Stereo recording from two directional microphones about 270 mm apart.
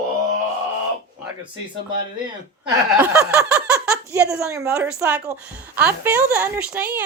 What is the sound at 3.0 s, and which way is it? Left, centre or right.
Speech, centre.